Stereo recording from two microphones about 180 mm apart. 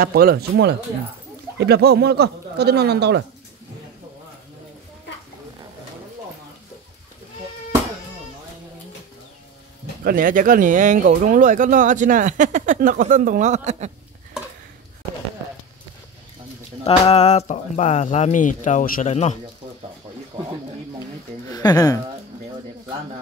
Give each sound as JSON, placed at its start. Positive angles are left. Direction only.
{"t": 0.0, "sound": "speech", "side_deg": -55}
{"t": 10.0, "sound": "speech", "side_deg": -50}
{"t": 16.8, "sound": "speech", "side_deg": 35}
{"t": 20.3, "sound": "speech", "side_deg": -15}
{"t": 21.5, "sound": "speech", "side_deg": 20}